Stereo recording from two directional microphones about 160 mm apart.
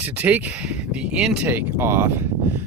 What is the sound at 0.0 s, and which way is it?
Speech, 10° right (ahead or behind).